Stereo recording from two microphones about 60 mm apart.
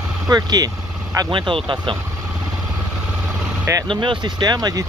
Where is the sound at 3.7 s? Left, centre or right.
Right.